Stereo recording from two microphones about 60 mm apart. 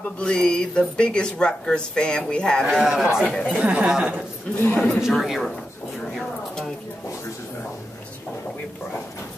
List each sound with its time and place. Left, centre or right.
0.2 s speech: centre
2.8 s a man's voice: centre
3.3 s speech: centre
3.5 s speech: right
4.6 s speech: left
5.1 s speech: centre